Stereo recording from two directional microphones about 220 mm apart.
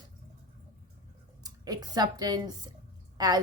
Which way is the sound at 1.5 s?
15° right (ahead or behind).